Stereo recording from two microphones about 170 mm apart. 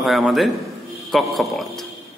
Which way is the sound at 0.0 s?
Centre (ahead or behind).